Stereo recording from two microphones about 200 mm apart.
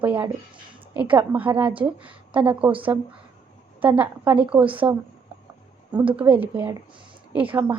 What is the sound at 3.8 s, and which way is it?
A woman's voice, 10° right (ahead or behind).